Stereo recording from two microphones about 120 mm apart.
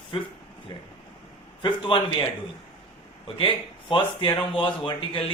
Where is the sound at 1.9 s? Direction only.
45° left (ahead or behind).